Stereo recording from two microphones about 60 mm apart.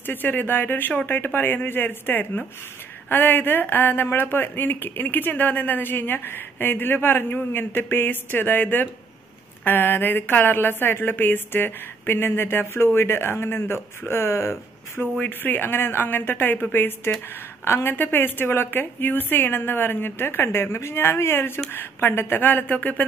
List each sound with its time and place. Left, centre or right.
0.0 s speech: left
15.1 s speech: left